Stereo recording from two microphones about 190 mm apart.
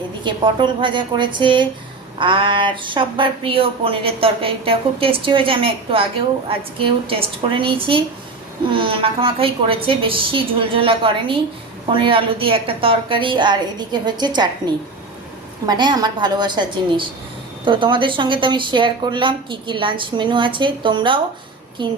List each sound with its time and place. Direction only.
0.3 s a woman's voice: 25° right (ahead or behind)
15.6 s a woman's voice: 20° right (ahead or behind)